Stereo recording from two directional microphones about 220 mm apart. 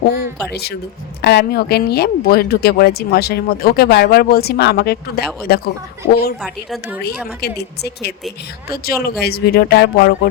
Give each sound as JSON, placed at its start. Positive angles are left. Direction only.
{"t": 0.5, "sound": "speech", "side_deg": 45}
{"t": 6.4, "sound": "a woman's voice", "side_deg": 0}
{"t": 7.4, "sound": "speech", "side_deg": 45}